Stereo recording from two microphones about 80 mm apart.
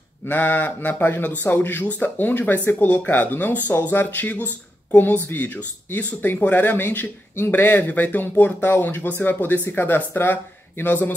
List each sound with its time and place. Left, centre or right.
0.3 s speech: left